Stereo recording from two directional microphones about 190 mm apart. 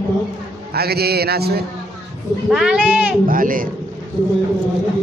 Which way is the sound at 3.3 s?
45° right (ahead or behind).